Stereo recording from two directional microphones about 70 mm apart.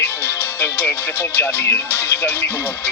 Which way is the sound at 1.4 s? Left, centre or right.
Left.